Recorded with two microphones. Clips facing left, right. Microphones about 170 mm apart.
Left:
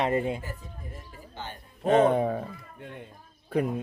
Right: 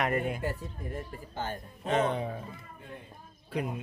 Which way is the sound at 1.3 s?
45° right (ahead or behind).